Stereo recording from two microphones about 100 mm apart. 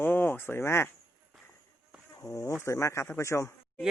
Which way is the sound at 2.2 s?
30° left (ahead or behind).